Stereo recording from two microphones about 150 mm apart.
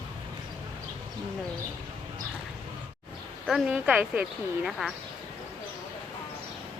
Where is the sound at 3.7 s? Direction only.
5° right (ahead or behind).